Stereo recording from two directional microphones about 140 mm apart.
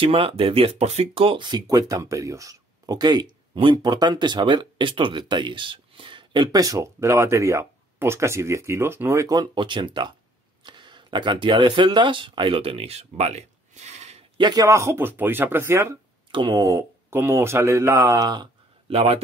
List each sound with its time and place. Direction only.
0.0 s speech: 40° right (ahead or behind)
14.4 s speech: 30° right (ahead or behind)
16.3 s speech: 30° right (ahead or behind)
18.9 s speech: 45° right (ahead or behind)